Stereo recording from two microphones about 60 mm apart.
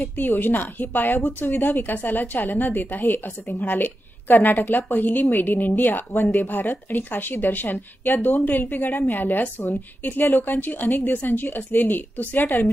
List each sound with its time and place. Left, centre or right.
0.0 s a woman's voice: left